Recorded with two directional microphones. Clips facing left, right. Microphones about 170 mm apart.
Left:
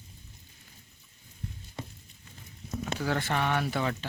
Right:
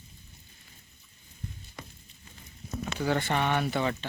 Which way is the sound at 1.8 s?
25° left (ahead or behind).